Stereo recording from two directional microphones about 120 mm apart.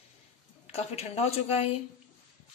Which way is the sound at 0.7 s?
60° left (ahead or behind).